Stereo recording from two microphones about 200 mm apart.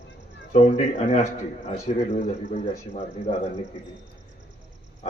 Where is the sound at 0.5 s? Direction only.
35° left (ahead or behind).